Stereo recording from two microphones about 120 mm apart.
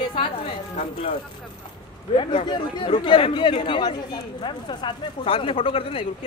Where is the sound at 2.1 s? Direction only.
40° left (ahead or behind).